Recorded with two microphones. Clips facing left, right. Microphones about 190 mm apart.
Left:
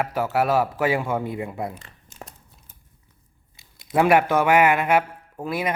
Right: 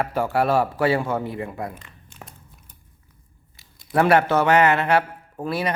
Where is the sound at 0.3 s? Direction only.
5° left (ahead or behind).